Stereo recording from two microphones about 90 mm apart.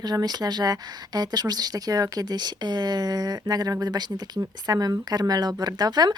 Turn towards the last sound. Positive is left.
turn(degrees=-50)  # may be behind; listen again after turning